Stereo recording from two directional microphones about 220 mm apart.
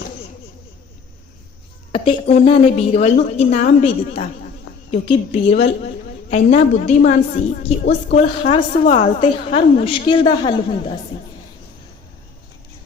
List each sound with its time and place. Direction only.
1.9 s a woman's voice: 25° left (ahead or behind)
4.9 s a woman's voice: 30° left (ahead or behind)